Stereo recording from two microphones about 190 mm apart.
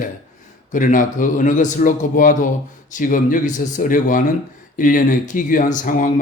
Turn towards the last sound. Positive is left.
turn(degrees=45)  # may be behind; listen again after turning